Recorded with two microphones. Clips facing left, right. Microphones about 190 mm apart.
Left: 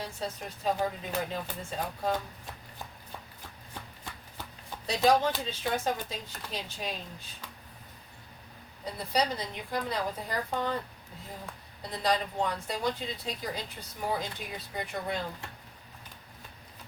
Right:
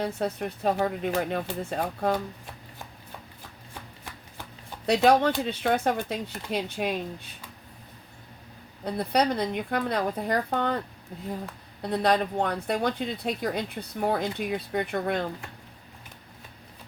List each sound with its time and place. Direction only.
0.0 s speech: 60° right (ahead or behind)
4.9 s speech: 65° right (ahead or behind)
8.8 s speech: 60° right (ahead or behind)
11.8 s speech: 60° right (ahead or behind)